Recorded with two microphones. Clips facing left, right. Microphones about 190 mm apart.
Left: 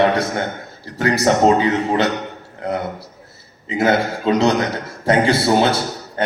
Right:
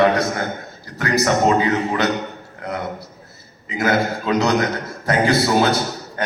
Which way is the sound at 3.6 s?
30° left (ahead or behind).